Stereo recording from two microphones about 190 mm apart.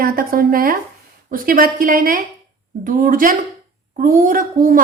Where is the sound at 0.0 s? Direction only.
50° right (ahead or behind).